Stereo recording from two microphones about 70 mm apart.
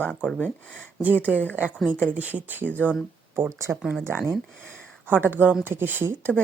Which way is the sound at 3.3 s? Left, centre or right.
Right.